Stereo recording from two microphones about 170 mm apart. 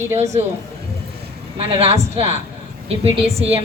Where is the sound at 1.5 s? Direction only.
35° right (ahead or behind).